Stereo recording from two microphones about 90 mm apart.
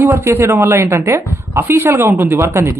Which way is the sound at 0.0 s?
25° right (ahead or behind).